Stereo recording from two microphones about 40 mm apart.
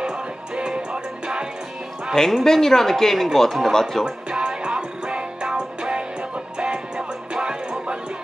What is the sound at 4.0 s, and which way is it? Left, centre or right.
Music, right.